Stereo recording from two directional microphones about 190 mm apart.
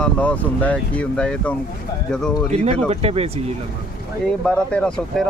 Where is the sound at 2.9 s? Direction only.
30° right (ahead or behind).